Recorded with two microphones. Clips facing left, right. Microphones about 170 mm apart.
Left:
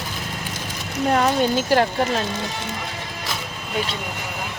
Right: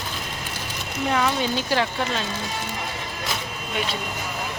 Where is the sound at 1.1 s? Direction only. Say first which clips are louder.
Left 4 dB; 45° left (ahead or behind).